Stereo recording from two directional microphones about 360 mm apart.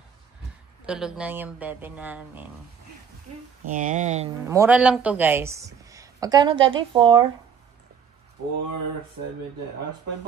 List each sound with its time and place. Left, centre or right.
0.8 s speech: centre
3.6 s speech: right
4.5 s speech: centre